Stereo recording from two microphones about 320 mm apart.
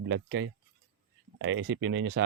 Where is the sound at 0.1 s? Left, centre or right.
Right.